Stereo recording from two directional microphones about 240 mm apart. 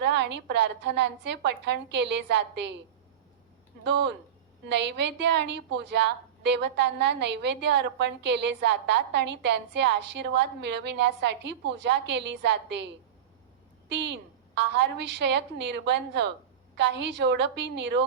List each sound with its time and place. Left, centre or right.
0.0 s a woman's voice: right
4.7 s a woman's voice: right